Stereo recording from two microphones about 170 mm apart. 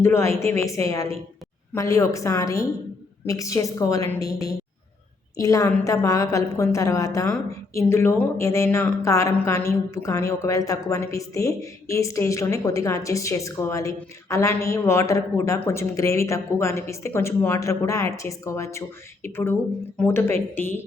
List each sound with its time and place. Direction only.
0.0 s a woman's voice: 15° left (ahead or behind)